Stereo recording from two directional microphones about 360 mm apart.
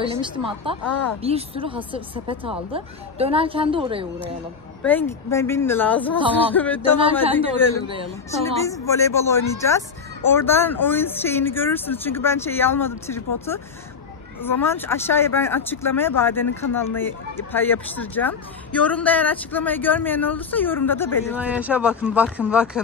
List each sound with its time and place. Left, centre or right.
0.0 s a woman's voice: centre
4.8 s speech: centre
21.4 s speech: centre